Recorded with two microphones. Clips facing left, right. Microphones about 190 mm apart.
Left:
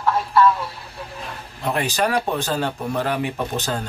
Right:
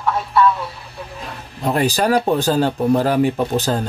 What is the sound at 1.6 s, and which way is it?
Speech, 35° right (ahead or behind).